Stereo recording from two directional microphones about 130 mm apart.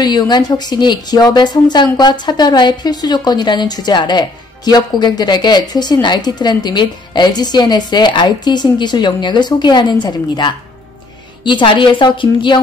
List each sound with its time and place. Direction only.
0.0 s speech: 35° left (ahead or behind)